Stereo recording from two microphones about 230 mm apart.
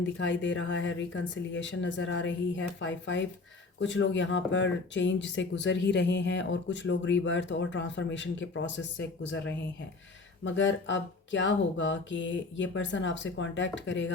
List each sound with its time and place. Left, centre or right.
0.0 s speech: left
10.4 s speech: left